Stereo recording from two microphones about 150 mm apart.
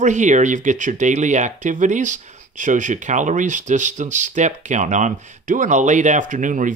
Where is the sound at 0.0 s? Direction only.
55° right (ahead or behind).